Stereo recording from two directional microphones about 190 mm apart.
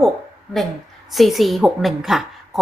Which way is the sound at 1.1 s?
Centre (ahead or behind).